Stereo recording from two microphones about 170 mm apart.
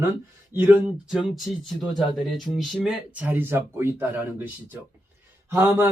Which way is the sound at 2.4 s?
Centre (ahead or behind).